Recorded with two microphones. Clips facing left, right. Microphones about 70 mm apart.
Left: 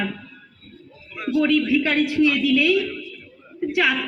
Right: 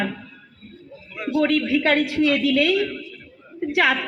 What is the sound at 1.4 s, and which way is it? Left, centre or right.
Speech, right.